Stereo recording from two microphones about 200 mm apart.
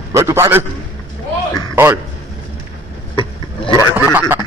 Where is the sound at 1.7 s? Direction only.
15° right (ahead or behind).